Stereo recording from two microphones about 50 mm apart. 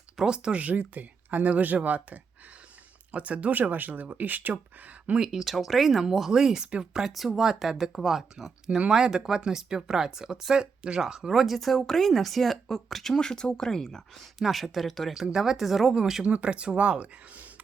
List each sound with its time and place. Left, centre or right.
0.2 s speech: centre; by 4.5 s right
5.2 s speech: centre
7.0 s speech: centre
13.1 s speech: centre
14.2 s speech: centre
16.2 s speech: right